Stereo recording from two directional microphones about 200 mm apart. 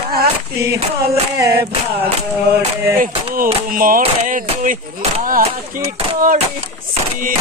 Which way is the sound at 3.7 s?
45° right (ahead or behind).